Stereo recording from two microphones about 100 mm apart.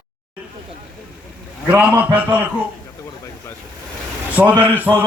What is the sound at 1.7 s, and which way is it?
Speech, 15° right (ahead or behind).